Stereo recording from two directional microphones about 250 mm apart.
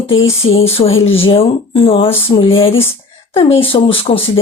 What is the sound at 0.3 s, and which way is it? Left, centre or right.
Speech, left.